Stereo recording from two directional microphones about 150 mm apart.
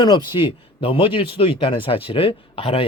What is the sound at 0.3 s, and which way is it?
Speech, 35° left (ahead or behind).